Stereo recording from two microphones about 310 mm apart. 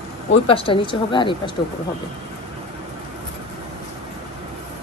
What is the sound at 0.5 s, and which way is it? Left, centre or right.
Speech, centre.